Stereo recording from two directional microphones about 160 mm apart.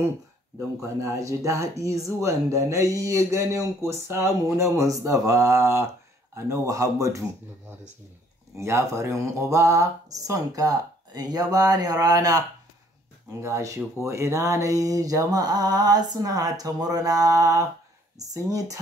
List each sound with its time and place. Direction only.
1.0 s speech: 20° right (ahead or behind)
8.5 s speech: 15° right (ahead or behind)